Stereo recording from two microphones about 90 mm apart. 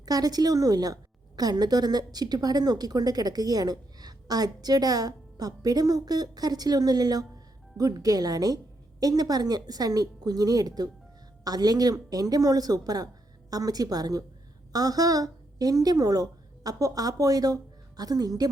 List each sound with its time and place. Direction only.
0.0 s a woman's voice: 45° right (ahead or behind)